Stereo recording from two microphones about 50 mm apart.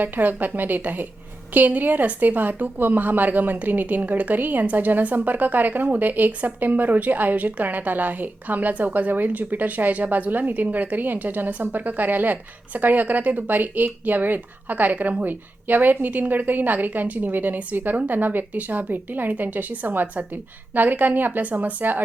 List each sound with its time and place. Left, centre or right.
0.0 s a woman's voice: right